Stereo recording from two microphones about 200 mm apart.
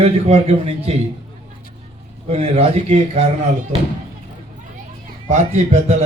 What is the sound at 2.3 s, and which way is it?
Speech, 30° right (ahead or behind).